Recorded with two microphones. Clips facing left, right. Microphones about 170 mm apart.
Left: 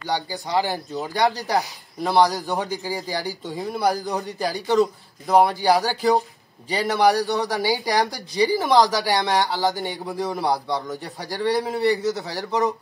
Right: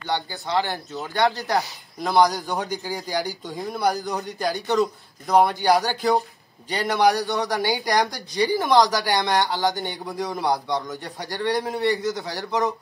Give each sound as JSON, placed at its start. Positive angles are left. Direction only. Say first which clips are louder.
{"t": 0.0, "sound": "speech", "louder": "left 1 dB", "side_deg": 10}
{"t": 2.0, "sound": "a man's voice", "louder": "even", "side_deg": 5}